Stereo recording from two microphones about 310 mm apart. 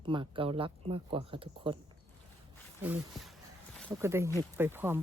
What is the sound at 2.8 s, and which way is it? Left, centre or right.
Speech, centre.